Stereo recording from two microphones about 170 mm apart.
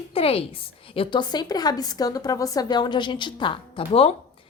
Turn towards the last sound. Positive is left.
turn(degrees=35)  # may be behind; listen again after turning